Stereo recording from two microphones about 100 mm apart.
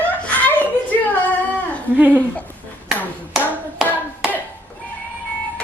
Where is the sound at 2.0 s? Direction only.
15° right (ahead or behind).